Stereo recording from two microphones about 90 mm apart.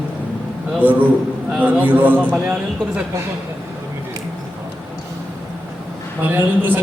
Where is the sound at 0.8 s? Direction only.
20° right (ahead or behind).